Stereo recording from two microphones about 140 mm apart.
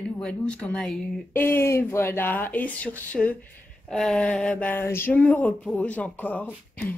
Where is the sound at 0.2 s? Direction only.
10° left (ahead or behind).